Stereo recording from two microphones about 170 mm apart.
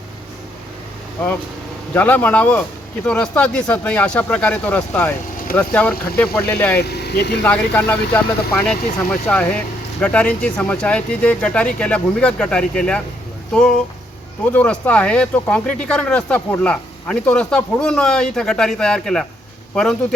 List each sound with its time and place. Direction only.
1.9 s speech: 10° left (ahead or behind)
6.7 s speech: 70° left (ahead or behind)
7.4 s speech: 10° left (ahead or behind)